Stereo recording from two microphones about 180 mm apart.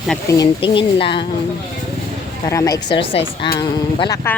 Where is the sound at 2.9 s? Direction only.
30° left (ahead or behind).